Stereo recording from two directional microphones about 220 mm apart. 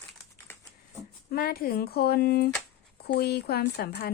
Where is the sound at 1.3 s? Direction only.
45° left (ahead or behind).